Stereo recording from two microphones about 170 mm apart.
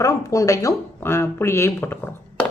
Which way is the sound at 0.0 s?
20° left (ahead or behind).